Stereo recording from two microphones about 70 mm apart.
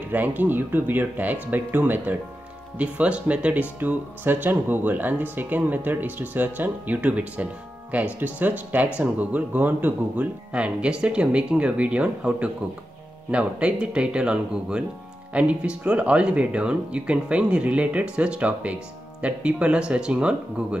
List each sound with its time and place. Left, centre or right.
0.1 s speech: right